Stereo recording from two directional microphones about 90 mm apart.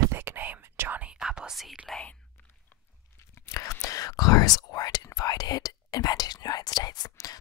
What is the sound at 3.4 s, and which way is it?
Whispering, 35° left (ahead or behind).